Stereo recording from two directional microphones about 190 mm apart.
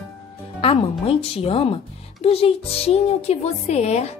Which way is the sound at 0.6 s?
30° left (ahead or behind).